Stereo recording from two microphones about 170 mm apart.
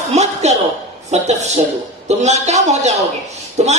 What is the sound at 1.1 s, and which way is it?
A man's voice, 40° right (ahead or behind).